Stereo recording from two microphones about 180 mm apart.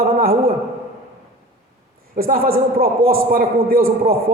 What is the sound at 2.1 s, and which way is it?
A man's voice, 55° right (ahead or behind).